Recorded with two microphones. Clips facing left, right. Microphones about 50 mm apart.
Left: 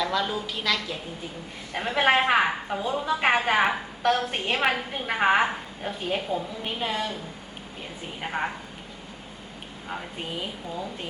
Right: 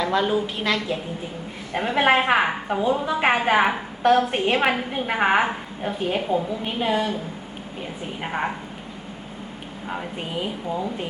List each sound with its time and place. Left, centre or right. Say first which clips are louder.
0.0 s a woman's voice: right 5 dB; right
1.7 s a woman's voice: right 3 dB; centre
8.2 s a woman's voice: right 2 dB; centre
9.9 s a woman's voice: right 4 dB; centre